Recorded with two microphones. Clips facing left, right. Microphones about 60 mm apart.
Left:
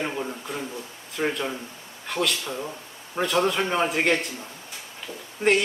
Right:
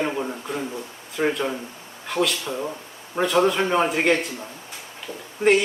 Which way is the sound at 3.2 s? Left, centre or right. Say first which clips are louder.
Right 3 dB; centre.